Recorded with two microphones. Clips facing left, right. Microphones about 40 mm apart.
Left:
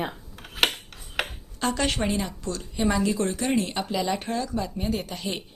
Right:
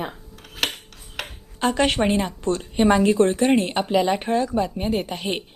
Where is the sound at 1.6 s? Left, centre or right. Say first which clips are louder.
Right 6 dB; right.